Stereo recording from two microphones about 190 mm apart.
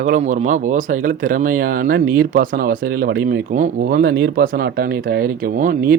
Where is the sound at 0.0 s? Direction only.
40° right (ahead or behind).